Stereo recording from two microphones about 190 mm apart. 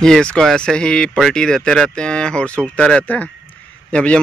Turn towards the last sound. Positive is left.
turn(degrees=5)  # may be behind; listen again after turning